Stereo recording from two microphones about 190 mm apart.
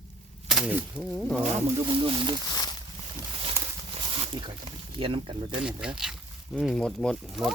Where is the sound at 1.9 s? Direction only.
25° right (ahead or behind).